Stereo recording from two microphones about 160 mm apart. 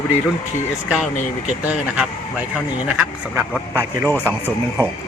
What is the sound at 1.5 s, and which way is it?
Speech, 10° right (ahead or behind).